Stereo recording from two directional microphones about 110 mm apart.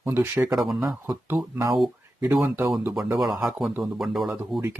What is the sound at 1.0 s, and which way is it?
Speech, 30° right (ahead or behind).